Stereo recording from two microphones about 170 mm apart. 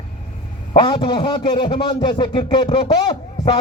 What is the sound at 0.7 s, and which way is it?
A man's voice, 30° left (ahead or behind).